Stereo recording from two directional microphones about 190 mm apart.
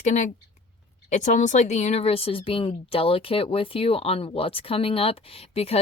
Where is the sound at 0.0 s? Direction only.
40° left (ahead or behind).